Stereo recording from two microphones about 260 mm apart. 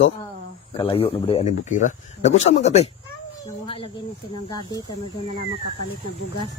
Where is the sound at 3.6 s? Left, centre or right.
Left.